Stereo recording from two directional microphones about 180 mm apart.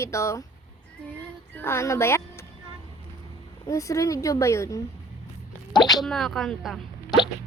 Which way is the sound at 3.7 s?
15° left (ahead or behind).